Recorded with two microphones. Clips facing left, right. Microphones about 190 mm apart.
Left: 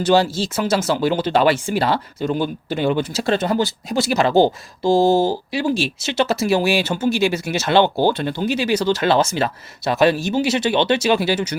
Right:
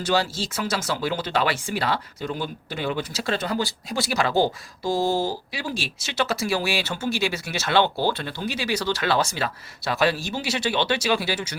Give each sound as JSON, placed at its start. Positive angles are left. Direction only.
{"t": 0.0, "sound": "speech", "side_deg": 25}